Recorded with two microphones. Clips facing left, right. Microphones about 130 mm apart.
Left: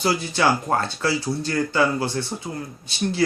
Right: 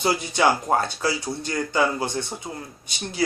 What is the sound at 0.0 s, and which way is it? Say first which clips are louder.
Speech: even; 20° right (ahead or behind).